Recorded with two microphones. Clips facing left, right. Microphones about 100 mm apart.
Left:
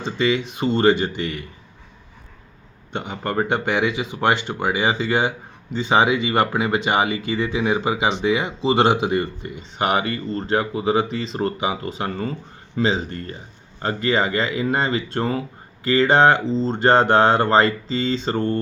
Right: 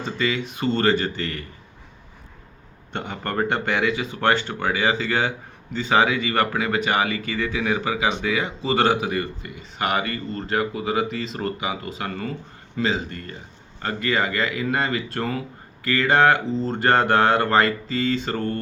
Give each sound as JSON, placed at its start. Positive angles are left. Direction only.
{"t": 0.0, "sound": "speech", "side_deg": 20}
{"t": 2.9, "sound": "speech", "side_deg": 15}